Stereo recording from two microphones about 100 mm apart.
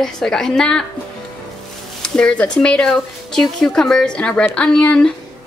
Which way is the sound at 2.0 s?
10° left (ahead or behind).